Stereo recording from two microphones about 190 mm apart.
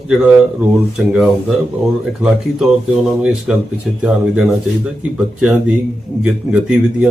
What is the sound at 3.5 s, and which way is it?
Speech, 5° right (ahead or behind).